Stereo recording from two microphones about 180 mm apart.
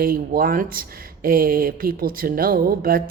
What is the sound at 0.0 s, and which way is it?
Speech, 55° right (ahead or behind).